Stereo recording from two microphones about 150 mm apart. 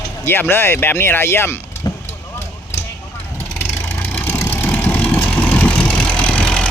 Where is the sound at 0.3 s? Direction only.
15° left (ahead or behind).